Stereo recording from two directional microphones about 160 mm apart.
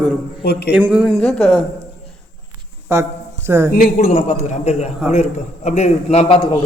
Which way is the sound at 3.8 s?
60° left (ahead or behind).